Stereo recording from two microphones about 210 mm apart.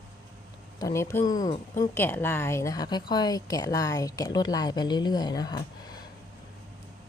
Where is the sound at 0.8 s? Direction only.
15° left (ahead or behind).